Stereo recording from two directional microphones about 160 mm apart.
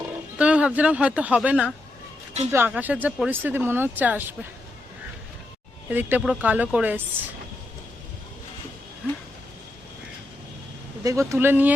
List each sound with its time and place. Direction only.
0.3 s speech: 10° right (ahead or behind)
5.9 s speech: 10° right (ahead or behind)
11.0 s speech: 20° right (ahead or behind)